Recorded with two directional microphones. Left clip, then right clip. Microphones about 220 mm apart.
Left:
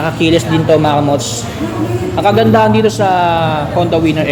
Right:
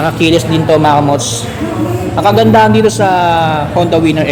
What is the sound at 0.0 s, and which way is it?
A man's voice, 5° right (ahead or behind).